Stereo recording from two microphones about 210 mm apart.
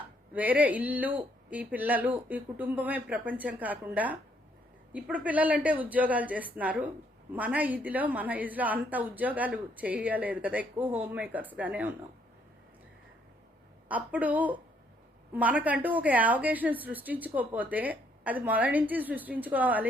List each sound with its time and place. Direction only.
0.3 s a woman's voice: 5° right (ahead or behind)
13.8 s a woman's voice: 5° right (ahead or behind)